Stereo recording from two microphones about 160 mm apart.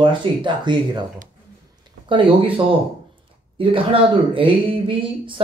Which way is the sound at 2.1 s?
30° right (ahead or behind).